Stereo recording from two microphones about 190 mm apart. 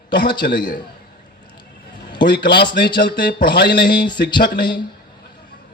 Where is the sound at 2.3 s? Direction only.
65° left (ahead or behind).